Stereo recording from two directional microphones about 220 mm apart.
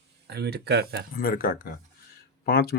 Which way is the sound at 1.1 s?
40° left (ahead or behind).